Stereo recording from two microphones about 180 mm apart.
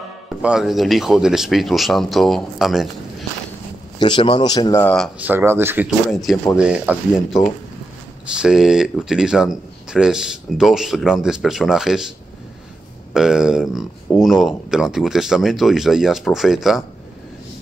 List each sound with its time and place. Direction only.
0.4 s speech: 5° right (ahead or behind)
4.0 s speech: 25° left (ahead or behind)
4.8 s speech: 5° left (ahead or behind)
5.2 s speech: 10° right (ahead or behind)
5.9 s speech: centre (ahead or behind)
8.3 s speech: 5° right (ahead or behind)
13.1 s speech: 5° right (ahead or behind)